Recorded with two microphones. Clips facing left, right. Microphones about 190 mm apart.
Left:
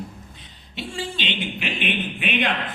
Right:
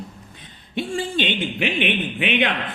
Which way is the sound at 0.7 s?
50° right (ahead or behind).